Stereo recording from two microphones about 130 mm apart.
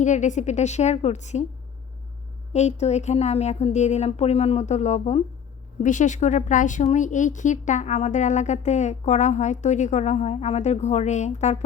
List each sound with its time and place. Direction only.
0.0 s a woman's voice: 70° left (ahead or behind)
2.5 s a woman's voice: 60° left (ahead or behind)
5.8 s a woman's voice: 75° left (ahead or behind)